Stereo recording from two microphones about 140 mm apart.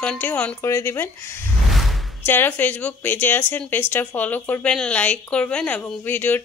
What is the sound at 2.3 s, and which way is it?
Speech, 15° left (ahead or behind).